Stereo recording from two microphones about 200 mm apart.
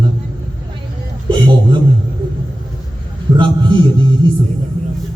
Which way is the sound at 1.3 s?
25° right (ahead or behind).